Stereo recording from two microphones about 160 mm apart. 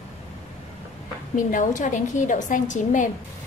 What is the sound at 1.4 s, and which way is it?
A woman's voice, 55° left (ahead or behind).